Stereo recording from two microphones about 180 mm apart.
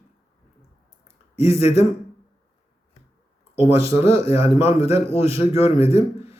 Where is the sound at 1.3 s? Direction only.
35° left (ahead or behind).